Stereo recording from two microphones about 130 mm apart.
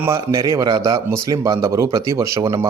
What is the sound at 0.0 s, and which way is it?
A man's voice, 20° right (ahead or behind).